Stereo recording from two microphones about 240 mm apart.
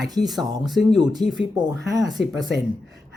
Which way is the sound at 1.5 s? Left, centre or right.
Centre.